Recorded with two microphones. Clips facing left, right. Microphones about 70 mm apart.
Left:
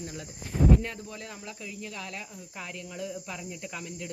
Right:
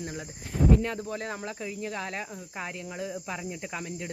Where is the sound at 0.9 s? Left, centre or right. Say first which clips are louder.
Right 7 dB; right.